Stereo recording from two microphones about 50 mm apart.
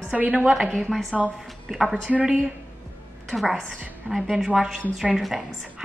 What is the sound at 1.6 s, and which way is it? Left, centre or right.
Speech, centre.